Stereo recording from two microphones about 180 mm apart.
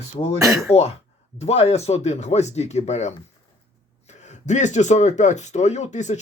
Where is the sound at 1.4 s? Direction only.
35° left (ahead or behind).